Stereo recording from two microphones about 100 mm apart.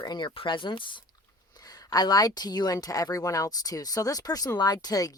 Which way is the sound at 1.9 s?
40° left (ahead or behind).